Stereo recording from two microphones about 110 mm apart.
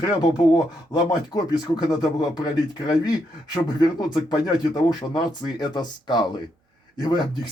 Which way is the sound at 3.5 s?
40° left (ahead or behind).